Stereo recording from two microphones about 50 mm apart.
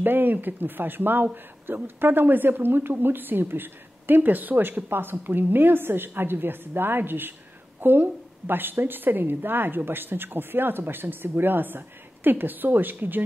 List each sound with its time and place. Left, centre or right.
0.0 s speech: right